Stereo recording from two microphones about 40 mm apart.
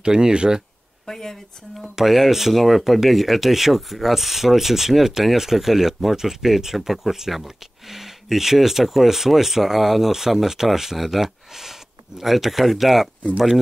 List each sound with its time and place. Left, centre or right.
0.0 s speech: right
1.0 s a woman's voice: centre
2.0 s speech: centre